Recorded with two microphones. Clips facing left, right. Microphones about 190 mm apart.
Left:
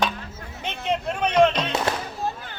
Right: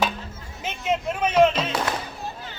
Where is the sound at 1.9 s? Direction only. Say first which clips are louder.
Left 2 dB; 30° left (ahead or behind).